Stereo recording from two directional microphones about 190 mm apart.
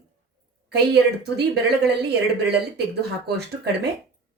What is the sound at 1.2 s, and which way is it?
Speech, 60° right (ahead or behind).